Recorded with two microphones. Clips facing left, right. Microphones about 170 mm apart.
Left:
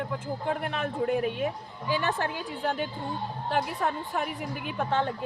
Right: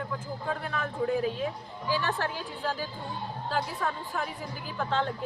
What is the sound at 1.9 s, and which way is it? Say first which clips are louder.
Speech: left 2 dB; 20° left (ahead or behind).